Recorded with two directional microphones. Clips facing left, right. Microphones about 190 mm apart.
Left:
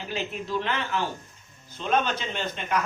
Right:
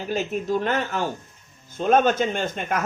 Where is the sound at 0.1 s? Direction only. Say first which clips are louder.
Right 6 dB; 45° right (ahead or behind).